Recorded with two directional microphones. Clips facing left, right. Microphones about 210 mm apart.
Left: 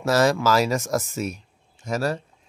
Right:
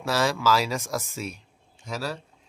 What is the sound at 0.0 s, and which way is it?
Speech, 45° left (ahead or behind).